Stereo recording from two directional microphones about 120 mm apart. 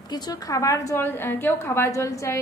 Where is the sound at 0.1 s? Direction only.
35° left (ahead or behind).